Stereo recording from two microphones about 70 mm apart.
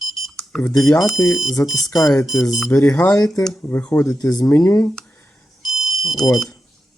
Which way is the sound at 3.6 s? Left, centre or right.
Left.